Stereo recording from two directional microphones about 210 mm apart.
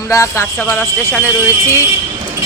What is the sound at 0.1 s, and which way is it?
Speech, 15° left (ahead or behind).